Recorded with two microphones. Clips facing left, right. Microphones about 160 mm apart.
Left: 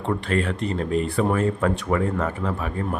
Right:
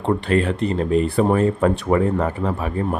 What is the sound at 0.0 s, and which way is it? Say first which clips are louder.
Speech: right 5 dB; 35° right (ahead or behind).